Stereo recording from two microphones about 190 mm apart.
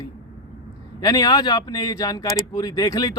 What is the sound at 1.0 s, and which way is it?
Speech, 20° left (ahead or behind).